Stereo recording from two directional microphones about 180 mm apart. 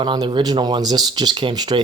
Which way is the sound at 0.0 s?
25° right (ahead or behind).